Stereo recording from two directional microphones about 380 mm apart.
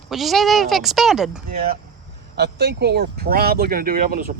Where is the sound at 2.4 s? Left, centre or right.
Right.